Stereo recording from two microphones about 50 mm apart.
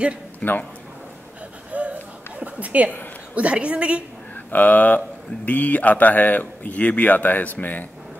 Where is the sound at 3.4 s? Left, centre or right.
Right.